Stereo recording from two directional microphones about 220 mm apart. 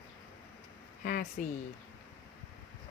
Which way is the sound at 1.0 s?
40° left (ahead or behind).